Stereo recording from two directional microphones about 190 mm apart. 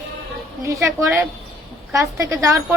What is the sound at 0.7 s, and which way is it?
A woman's voice, 15° right (ahead or behind).